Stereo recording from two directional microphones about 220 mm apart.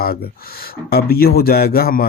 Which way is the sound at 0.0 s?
45° left (ahead or behind).